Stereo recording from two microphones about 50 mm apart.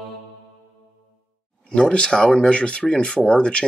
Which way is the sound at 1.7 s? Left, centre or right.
Centre.